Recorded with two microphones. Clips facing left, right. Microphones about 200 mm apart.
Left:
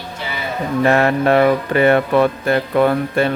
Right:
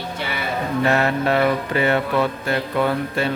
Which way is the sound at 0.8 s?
55° left (ahead or behind).